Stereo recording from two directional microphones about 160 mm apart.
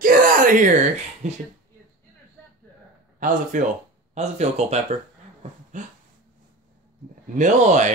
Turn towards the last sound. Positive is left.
turn(degrees=-50)  # may be behind; listen again after turning